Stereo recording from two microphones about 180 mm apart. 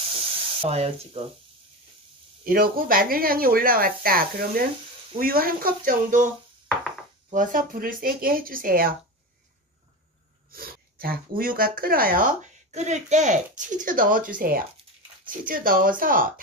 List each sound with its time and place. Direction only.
0.6 s sizzle: 35° right (ahead or behind)
2.4 s speech: 55° right (ahead or behind)
10.5 s speech: 55° right (ahead or behind)